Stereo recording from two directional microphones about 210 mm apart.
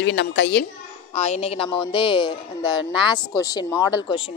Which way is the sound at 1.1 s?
30° left (ahead or behind).